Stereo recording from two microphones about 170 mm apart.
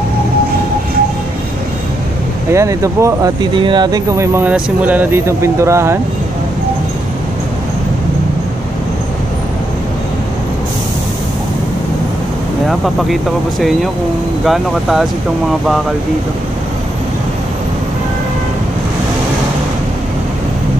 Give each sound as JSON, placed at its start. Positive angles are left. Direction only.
{"t": 2.5, "sound": "speech", "side_deg": -20}
{"t": 12.6, "sound": "speech", "side_deg": 0}